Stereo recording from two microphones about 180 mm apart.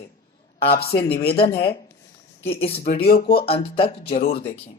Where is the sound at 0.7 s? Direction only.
60° left (ahead or behind).